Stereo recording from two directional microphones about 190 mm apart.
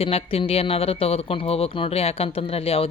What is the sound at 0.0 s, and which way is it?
Speech, 30° left (ahead or behind).